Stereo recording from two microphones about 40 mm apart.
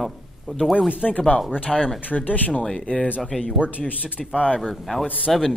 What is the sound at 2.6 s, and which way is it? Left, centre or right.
Speech, left.